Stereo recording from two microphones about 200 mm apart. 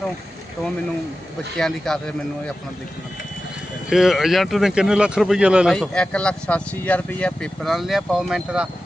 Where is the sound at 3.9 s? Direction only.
Centre (ahead or behind).